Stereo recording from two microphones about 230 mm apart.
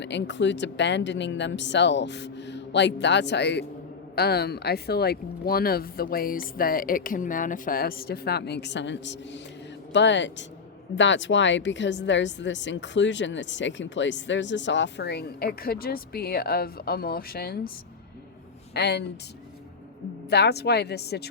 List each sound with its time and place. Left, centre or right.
0.0 s speech: left
18.7 s speech: left
20.3 s speech: left